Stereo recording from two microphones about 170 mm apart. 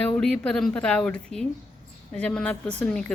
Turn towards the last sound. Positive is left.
turn(degrees=5)  # may be behind; listen again after turning